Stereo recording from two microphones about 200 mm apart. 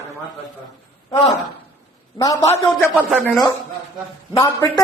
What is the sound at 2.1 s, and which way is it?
Speech, 15° left (ahead or behind).